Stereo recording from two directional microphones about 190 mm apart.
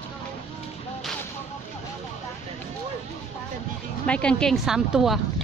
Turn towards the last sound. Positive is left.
turn(degrees=0)  # may be behind; listen again after turning